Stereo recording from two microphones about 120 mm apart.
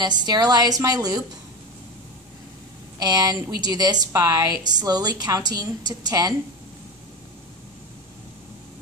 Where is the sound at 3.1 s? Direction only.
35° right (ahead or behind).